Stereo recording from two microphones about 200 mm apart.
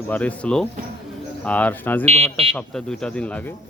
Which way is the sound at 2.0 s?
30° right (ahead or behind).